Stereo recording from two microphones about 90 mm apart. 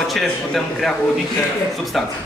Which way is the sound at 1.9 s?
Centre (ahead or behind).